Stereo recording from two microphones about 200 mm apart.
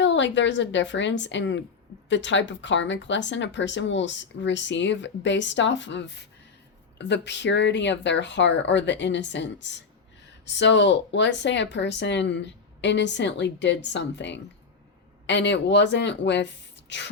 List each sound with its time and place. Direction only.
0.0 s speech: 65° left (ahead or behind)